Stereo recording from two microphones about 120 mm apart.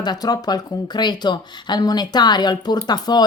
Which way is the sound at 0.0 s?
35° left (ahead or behind).